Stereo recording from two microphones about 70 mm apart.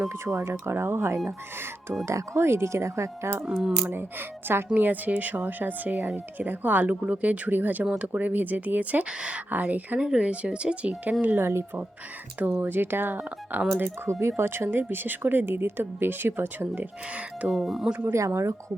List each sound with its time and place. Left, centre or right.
0.3 s speech: right
3.4 s speech: centre
3.8 s speech: right
10.0 s speech: centre
11.3 s speech: right
17.5 s speech: centre
18.3 s speech: right